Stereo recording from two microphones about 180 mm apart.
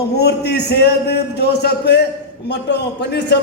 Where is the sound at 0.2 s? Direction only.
65° left (ahead or behind).